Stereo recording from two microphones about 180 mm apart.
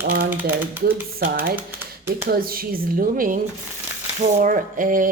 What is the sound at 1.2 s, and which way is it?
Speech, 60° right (ahead or behind).